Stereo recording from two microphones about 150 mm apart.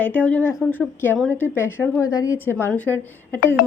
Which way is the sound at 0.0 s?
10° left (ahead or behind).